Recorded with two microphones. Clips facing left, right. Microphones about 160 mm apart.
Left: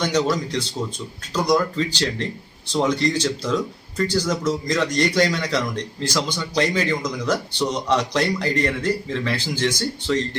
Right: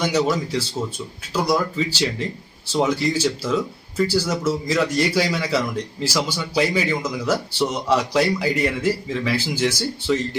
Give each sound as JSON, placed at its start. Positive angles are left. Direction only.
{"t": 0.0, "sound": "speech", "side_deg": -10}